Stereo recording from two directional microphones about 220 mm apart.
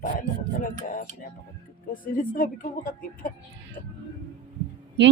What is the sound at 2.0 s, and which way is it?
Speech, 40° left (ahead or behind).